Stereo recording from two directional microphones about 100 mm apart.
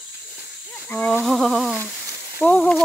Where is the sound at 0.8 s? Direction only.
15° left (ahead or behind).